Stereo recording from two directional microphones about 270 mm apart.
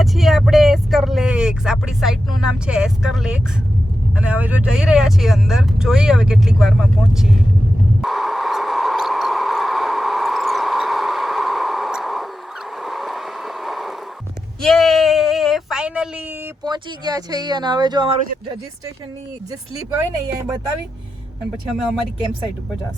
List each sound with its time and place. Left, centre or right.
0.0 s vehicle: centre
4.1 s speech: centre
8.0 s a sound: centre
12.8 s vehicle: centre
14.6 s a sound: centre
16.6 s speech: centre